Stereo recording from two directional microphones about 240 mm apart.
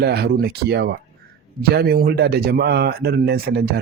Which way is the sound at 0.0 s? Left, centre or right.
Right.